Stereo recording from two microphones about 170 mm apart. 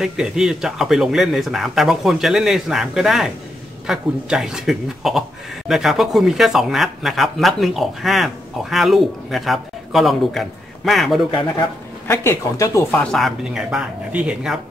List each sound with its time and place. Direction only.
0.0 s speech: 5° right (ahead or behind)
12.1 s speech: 15° left (ahead or behind)
13.0 s speech: centre (ahead or behind)